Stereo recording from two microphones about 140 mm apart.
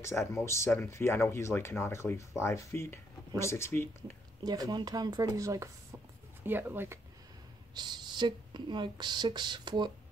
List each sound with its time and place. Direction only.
0.0 s speech: 20° left (ahead or behind)
4.4 s speech: 30° right (ahead or behind)
7.7 s speech: 30° right (ahead or behind)